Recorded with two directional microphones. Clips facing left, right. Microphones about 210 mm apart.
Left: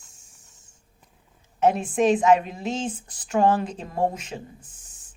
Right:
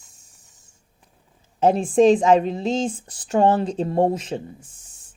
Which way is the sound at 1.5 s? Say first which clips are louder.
Right 5 dB; 30° right (ahead or behind).